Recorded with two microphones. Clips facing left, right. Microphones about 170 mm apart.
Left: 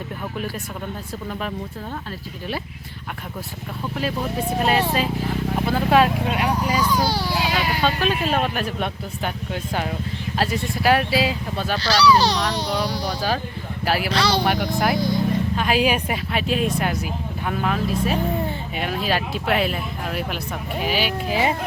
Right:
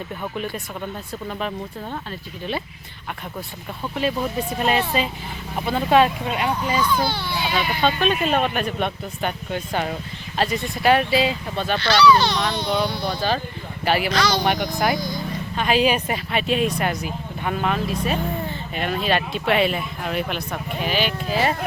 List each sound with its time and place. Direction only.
1.3 s speech: centre (ahead or behind)
4.6 s speech: 5° left (ahead or behind)
6.9 s speech: 35° left (ahead or behind)
7.4 s speech: 5° left (ahead or behind)
11.8 s speech: 35° left (ahead or behind)
13.1 s speech: 5° left (ahead or behind)
14.1 s speech: 30° left (ahead or behind)
14.4 s speech: 5° left (ahead or behind)
14.9 s speech: 30° left (ahead or behind)
15.5 s speech: 5° left (ahead or behind)